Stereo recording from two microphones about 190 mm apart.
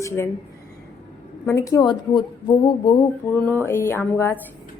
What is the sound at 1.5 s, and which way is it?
A woman's voice, 15° left (ahead or behind).